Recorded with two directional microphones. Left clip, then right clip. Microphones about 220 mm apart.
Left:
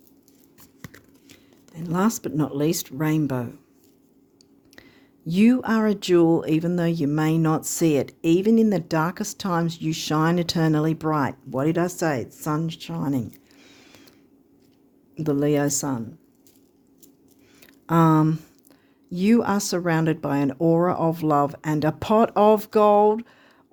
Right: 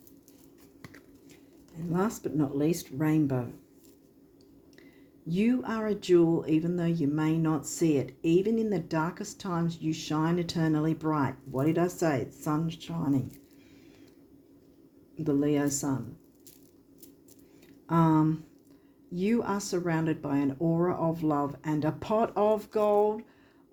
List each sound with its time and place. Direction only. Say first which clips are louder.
0.8 s a sound: left 5 dB; 40° left (ahead or behind)
1.9 s speech: left 6 dB; 45° left (ahead or behind)
5.3 s speech: left 9 dB; 50° left (ahead or behind)
15.1 s speech: left 6 dB; 50° left (ahead or behind)
17.8 s speech: left 6 dB; 55° left (ahead or behind)